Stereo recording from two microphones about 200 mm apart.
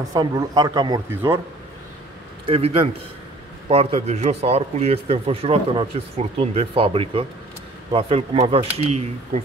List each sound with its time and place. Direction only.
0.1 s speech: 20° right (ahead or behind)
2.4 s speech: 30° right (ahead or behind)